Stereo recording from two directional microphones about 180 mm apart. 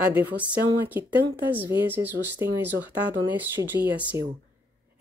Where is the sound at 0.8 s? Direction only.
10° right (ahead or behind).